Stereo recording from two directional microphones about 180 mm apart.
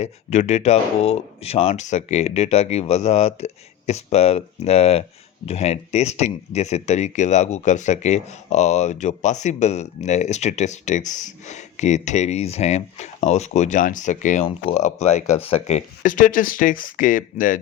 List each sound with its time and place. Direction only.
0.0 s speech: 40° left (ahead or behind)